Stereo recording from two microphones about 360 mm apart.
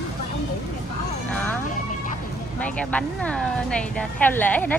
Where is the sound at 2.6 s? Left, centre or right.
Centre.